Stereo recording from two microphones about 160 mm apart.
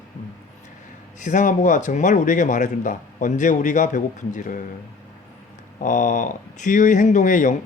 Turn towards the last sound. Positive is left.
turn(degrees=55)  # may be behind; listen again after turning